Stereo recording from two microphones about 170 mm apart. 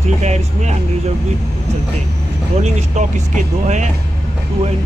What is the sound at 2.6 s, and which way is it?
Speech, 45° right (ahead or behind).